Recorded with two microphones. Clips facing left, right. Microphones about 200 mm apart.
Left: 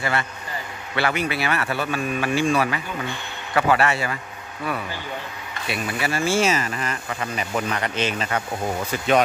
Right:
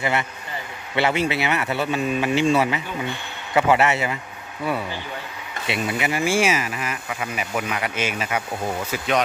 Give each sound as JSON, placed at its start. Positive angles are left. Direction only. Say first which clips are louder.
{"t": 0.0, "sound": "speech", "louder": "right 1 dB", "side_deg": -20}
{"t": 5.7, "sound": "speech", "louder": "right 2 dB", "side_deg": -20}